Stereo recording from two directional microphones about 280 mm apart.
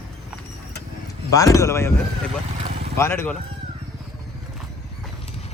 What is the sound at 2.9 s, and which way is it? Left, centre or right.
Speech, centre.